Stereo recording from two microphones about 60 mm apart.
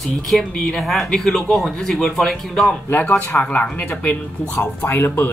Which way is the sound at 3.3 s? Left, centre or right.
Left.